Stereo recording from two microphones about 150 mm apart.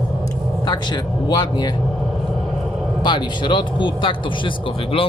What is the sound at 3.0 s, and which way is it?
Speech, 30° left (ahead or behind).